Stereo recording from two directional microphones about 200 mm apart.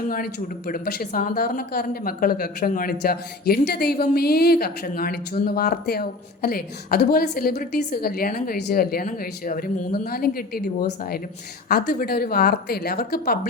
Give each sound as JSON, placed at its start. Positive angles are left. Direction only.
{"t": 0.1, "sound": "speech", "side_deg": 45}